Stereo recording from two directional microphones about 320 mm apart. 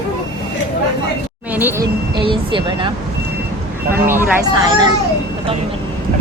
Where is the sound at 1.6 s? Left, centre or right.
Centre.